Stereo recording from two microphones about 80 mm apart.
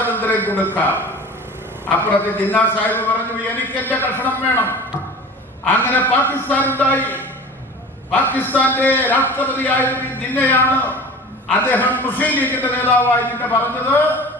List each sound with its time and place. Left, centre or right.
0.0 s a sound: left
1.9 s a man's voice: left
5.6 s a man's voice: left